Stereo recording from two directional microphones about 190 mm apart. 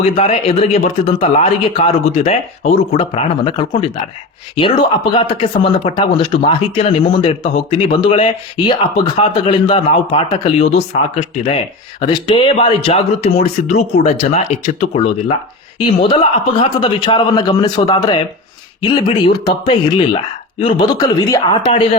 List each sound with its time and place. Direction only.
0.0 s a man's voice: 30° left (ahead or behind)